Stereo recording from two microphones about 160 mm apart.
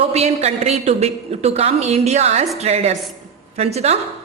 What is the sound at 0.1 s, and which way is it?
A woman's voice, 40° right (ahead or behind).